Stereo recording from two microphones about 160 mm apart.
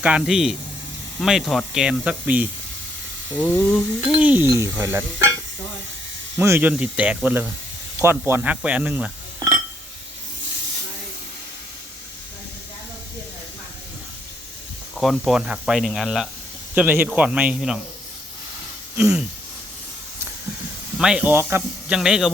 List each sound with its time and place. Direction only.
0.0 s speech: 5° right (ahead or behind)
3.4 s steam: 15° left (ahead or behind)
4.0 s speech: 10° right (ahead or behind)
6.3 s speech: 15° right (ahead or behind)
14.9 s speech: centre (ahead or behind)
18.9 s speech: 10° right (ahead or behind)
21.0 s speech: 5° right (ahead or behind)